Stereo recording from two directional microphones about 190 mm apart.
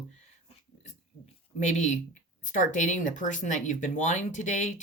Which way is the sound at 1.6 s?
40° left (ahead or behind).